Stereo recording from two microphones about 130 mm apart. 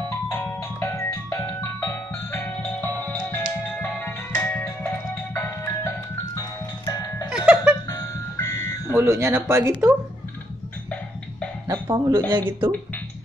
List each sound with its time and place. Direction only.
0.3 s music: 20° left (ahead or behind)
6.9 s music: 30° left (ahead or behind)
7.2 s music: 10° right (ahead or behind)
7.9 s music: 25° left (ahead or behind)
8.9 s speech: 20° right (ahead or behind)
11.6 s music: 30° right (ahead or behind)
12.3 s speech: 40° right (ahead or behind)